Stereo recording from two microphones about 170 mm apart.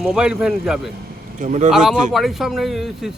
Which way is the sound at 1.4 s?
45° right (ahead or behind).